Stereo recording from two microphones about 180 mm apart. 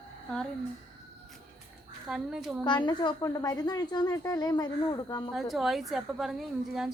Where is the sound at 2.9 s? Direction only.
25° left (ahead or behind).